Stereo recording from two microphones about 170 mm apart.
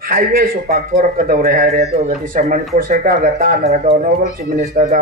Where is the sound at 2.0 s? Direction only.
50° right (ahead or behind).